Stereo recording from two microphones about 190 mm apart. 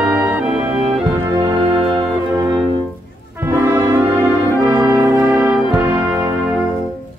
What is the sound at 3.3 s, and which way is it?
Brass instrument, 15° right (ahead or behind).